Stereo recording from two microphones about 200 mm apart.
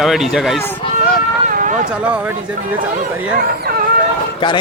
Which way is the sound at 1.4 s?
40° right (ahead or behind).